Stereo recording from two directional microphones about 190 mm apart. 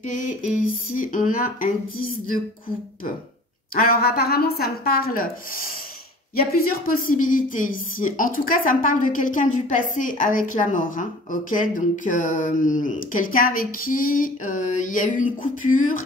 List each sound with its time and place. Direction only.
0.9 s speech: 45° left (ahead or behind)
3.7 s speech: 50° left (ahead or behind)
6.3 s speech: 50° left (ahead or behind)